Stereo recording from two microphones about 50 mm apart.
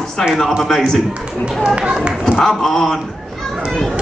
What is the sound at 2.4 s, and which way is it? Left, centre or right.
Speech, centre.